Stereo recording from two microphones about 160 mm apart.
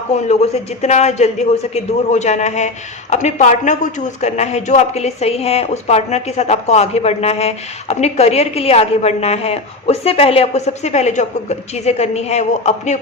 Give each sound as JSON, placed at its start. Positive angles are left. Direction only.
{"t": 0.8, "sound": "speech", "side_deg": 45}